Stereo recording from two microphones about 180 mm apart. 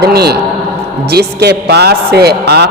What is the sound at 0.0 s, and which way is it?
A man's voice, 60° right (ahead or behind).